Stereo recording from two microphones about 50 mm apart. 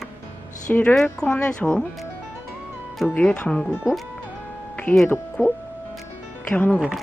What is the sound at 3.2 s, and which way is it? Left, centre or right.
Speech, centre.